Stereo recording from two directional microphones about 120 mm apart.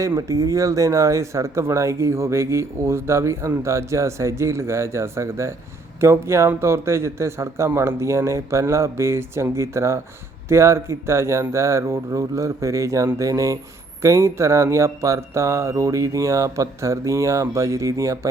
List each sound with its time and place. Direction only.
0.0 s speech: 25° right (ahead or behind)